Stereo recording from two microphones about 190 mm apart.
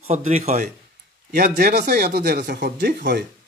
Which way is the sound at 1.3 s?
55° right (ahead or behind).